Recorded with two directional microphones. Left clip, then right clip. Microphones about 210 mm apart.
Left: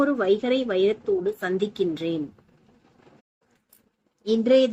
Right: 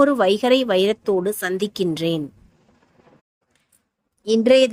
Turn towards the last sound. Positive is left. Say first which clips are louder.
# right 4 dB
turn(degrees=-45)  # may be behind; listen again after turning